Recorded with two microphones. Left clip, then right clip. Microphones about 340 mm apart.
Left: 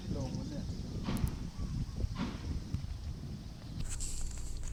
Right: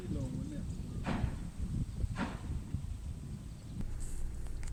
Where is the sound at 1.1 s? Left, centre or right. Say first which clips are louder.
Right 2 dB; right.